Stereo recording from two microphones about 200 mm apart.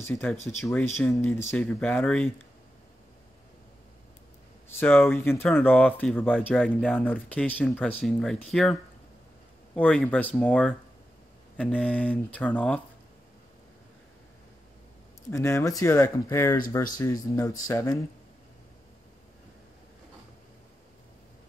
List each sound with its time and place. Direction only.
0.0 s speech: 10° left (ahead or behind)
4.7 s speech: 10° left (ahead or behind)
9.8 s speech: 5° left (ahead or behind)
15.3 s speech: 15° left (ahead or behind)